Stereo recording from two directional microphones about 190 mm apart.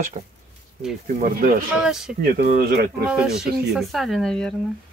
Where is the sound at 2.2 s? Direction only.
55° right (ahead or behind).